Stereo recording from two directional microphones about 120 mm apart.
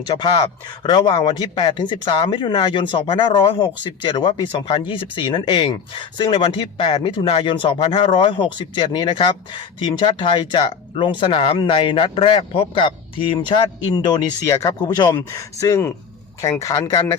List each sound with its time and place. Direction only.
0.2 s speech: 40° left (ahead or behind)